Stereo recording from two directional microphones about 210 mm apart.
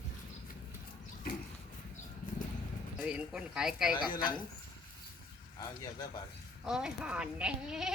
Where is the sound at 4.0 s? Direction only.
20° left (ahead or behind).